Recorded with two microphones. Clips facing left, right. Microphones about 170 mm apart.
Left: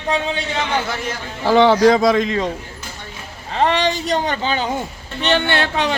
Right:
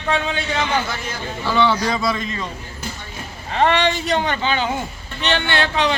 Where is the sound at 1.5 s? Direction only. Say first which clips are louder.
Left 8 dB; 90° left.